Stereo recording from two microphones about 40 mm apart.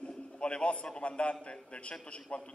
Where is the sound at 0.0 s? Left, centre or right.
Left.